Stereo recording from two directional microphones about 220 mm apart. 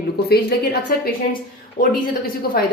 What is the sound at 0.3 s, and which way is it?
A woman's voice, 45° left (ahead or behind).